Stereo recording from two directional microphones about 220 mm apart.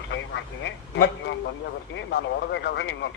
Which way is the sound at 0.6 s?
55° left (ahead or behind).